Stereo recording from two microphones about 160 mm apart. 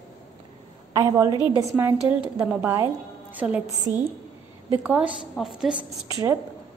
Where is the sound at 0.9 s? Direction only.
20° right (ahead or behind).